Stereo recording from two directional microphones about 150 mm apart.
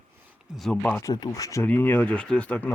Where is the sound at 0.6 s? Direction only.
5° left (ahead or behind).